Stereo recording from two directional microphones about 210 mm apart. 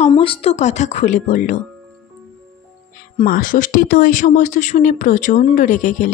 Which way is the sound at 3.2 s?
40° left (ahead or behind).